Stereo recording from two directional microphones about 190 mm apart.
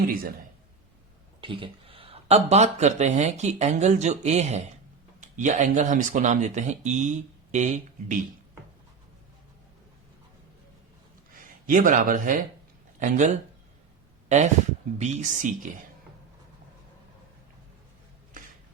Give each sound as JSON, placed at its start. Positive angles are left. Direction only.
{"t": 0.1, "sound": "speech", "side_deg": -50}
{"t": 1.4, "sound": "speech", "side_deg": -25}
{"t": 11.6, "sound": "speech", "side_deg": -45}